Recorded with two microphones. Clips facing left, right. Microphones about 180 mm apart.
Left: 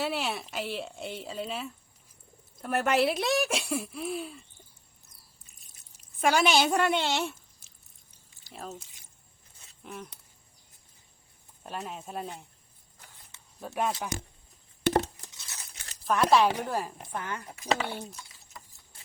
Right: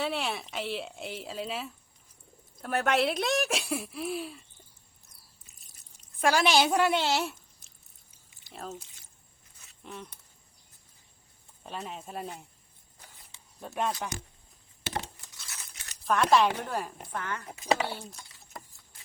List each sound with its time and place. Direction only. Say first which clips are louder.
0.0 s speech: even; centre (ahead or behind)
5.5 s speech: even; centre (ahead or behind)
8.5 s speech: right 1 dB; centre (ahead or behind)
9.8 s a sound: left 1 dB; 5° left (ahead or behind)
11.6 s speech: left 1 dB; centre (ahead or behind)
13.6 s speech: left 1 dB; 5° left (ahead or behind)
14.8 s a sound: left 10 dB; 45° left (ahead or behind)
15.4 s a sound: even; 25° left (ahead or behind)
16.0 s a woman's voice: left 1 dB; 5° left (ahead or behind)
17.5 s speech: right 2 dB; 15° right (ahead or behind)
17.8 s speech: left 1 dB; 20° left (ahead or behind)
18.5 s keys jangling: right 4 dB; 45° right (ahead or behind)